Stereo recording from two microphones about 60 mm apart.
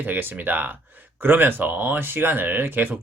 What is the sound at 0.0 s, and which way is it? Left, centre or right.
Speech, right.